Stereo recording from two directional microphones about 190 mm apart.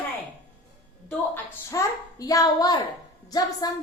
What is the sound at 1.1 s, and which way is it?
A woman's voice, 15° left (ahead or behind).